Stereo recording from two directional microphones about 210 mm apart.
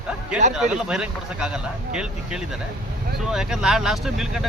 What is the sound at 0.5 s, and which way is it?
Speech, 5° right (ahead or behind).